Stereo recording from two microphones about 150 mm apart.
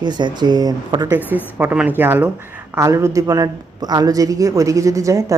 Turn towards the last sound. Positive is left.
turn(degrees=-20)  # may be behind; listen again after turning